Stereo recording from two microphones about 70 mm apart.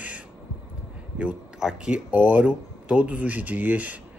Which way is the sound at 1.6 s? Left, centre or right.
Centre.